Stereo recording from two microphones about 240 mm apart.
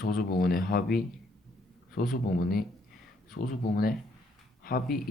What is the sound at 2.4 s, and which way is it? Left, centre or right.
Speech, left.